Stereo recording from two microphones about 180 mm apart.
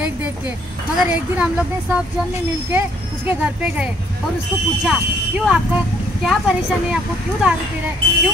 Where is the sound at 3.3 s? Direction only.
5° right (ahead or behind).